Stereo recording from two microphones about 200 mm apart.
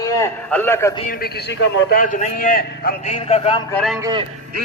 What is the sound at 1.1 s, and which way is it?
Speech, 50° left (ahead or behind).